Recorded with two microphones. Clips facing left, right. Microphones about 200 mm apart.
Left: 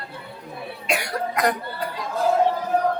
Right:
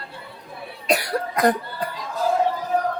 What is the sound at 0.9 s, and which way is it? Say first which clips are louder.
Cough: right 3 dB; 35° right (ahead or behind).